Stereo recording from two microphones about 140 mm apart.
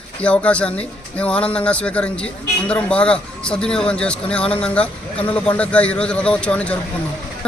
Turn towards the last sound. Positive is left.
turn(degrees=10)  # may be behind; listen again after turning